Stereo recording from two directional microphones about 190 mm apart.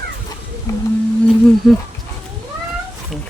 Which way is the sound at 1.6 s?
Centre (ahead or behind).